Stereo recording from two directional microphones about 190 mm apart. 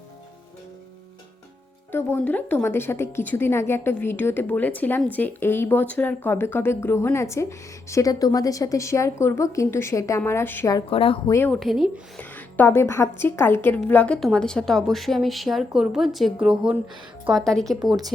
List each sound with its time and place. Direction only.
1.9 s a woman's voice: 10° left (ahead or behind)
10.8 s speech: 30° left (ahead or behind)
11.3 s a woman's voice: 10° left (ahead or behind)